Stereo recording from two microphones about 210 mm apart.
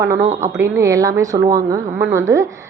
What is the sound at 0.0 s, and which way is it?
A woman's voice, 15° right (ahead or behind).